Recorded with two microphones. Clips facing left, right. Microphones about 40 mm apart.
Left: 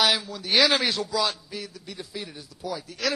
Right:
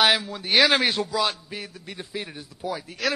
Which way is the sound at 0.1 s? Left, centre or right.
Right.